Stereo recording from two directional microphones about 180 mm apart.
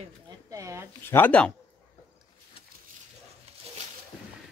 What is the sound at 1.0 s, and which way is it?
Speech, 10° left (ahead or behind).